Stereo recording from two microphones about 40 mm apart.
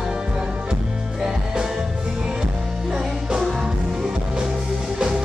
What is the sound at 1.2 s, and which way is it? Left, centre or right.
Music, centre.